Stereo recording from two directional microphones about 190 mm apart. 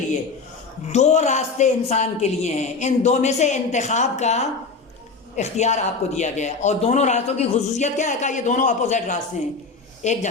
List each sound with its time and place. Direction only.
0.9 s a man's voice: 35° left (ahead or behind)